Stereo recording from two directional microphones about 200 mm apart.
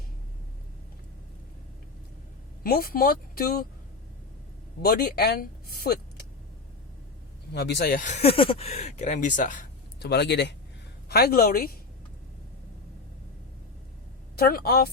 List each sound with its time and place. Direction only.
2.6 s speech: 50° left (ahead or behind)
4.8 s speech: 50° left (ahead or behind)
7.5 s speech: 55° left (ahead or behind); by 9.6 s 40° left (ahead or behind)
10.0 s speech: 55° left (ahead or behind)
14.3 s speech: 50° left (ahead or behind)